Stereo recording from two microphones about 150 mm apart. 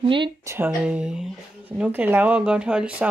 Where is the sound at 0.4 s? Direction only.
20° right (ahead or behind).